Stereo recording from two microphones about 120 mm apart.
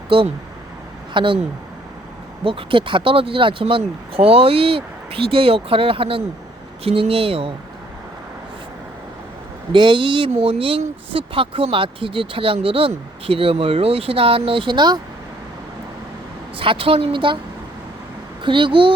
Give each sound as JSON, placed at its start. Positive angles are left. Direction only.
{"t": 0.1, "sound": "speech", "side_deg": -50}
{"t": 2.4, "sound": "speech", "side_deg": -45}
{"t": 9.7, "sound": "speech", "side_deg": -40}
{"t": 16.6, "sound": "speech", "side_deg": -50}
{"t": 18.4, "sound": "speech", "side_deg": -45}